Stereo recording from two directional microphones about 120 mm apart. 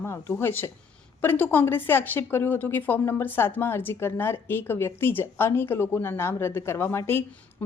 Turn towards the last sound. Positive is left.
turn(degrees=20)  # may be behind; listen again after turning